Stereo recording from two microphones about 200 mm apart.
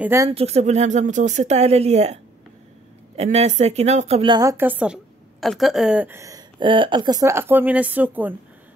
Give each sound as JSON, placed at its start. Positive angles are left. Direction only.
{"t": 0.0, "sound": "a woman's voice", "side_deg": -15}
{"t": 0.3, "sound": "speech", "side_deg": -30}
{"t": 3.2, "sound": "a woman's voice", "side_deg": -35}